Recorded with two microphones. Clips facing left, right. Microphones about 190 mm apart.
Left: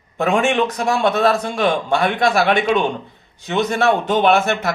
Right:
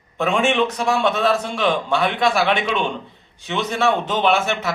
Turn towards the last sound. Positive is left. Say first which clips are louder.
# left 4 dB
turn(degrees=50)  # may be behind; listen again after turning